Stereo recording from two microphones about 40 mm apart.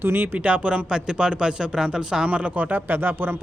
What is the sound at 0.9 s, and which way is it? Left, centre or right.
A man's voice, right.